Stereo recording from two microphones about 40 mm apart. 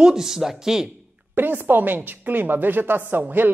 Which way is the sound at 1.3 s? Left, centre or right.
Right.